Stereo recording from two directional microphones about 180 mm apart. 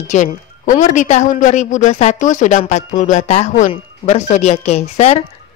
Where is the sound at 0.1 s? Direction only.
45° left (ahead or behind).